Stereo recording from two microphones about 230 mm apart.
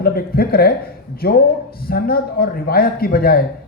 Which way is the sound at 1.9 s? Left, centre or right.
Left.